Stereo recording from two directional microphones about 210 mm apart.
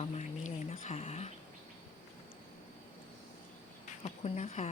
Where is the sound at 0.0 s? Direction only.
30° left (ahead or behind).